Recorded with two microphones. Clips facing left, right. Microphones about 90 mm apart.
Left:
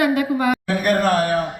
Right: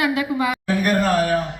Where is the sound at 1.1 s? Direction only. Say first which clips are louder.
Even; 50° left (ahead or behind).